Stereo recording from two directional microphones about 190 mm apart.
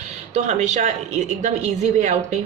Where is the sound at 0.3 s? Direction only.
35° right (ahead or behind).